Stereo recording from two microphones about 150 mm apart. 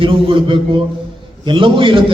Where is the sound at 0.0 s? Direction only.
35° right (ahead or behind).